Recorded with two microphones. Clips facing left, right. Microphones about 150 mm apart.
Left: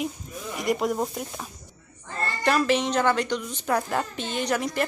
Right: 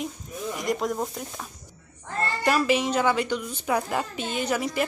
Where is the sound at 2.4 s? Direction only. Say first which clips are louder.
Left 1 dB; 5° right (ahead or behind).